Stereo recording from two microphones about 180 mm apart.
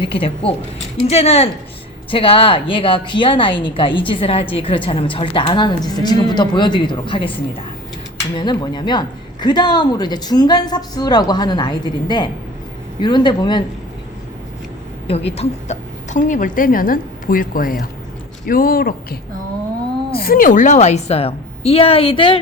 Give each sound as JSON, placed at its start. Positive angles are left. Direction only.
{"t": 0.0, "sound": "a woman's voice", "side_deg": 30}
{"t": 15.0, "sound": "speech", "side_deg": 35}
{"t": 20.1, "sound": "a woman's voice", "side_deg": 55}